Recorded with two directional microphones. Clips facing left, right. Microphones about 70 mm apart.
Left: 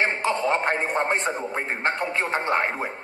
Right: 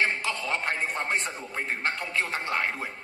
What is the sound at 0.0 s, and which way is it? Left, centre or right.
A man's voice, left.